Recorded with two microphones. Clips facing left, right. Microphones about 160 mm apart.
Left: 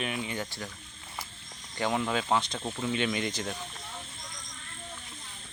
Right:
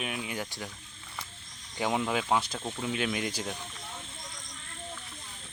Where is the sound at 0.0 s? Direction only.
5° right (ahead or behind).